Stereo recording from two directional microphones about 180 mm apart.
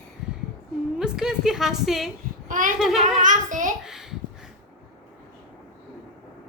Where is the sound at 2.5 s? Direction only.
50° right (ahead or behind).